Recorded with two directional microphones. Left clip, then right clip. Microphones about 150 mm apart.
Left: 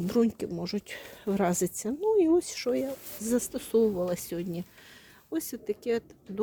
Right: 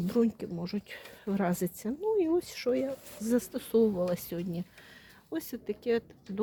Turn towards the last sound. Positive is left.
turn(degrees=15)  # may be behind; listen again after turning